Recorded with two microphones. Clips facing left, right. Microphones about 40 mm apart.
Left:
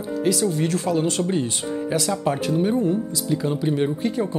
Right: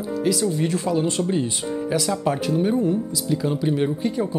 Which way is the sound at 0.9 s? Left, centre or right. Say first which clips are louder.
Even; centre.